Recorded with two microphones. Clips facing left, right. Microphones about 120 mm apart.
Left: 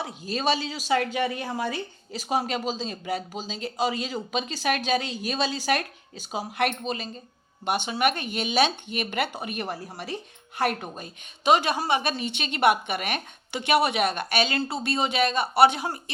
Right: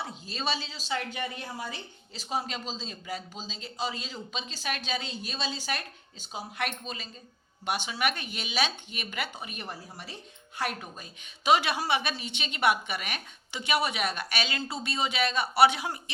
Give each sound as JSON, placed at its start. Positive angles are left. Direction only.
{"t": 0.3, "sound": "speech", "side_deg": 60}
{"t": 10.6, "sound": "a woman's voice", "side_deg": 55}